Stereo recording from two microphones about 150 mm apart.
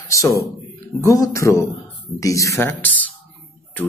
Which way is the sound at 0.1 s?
20° left (ahead or behind).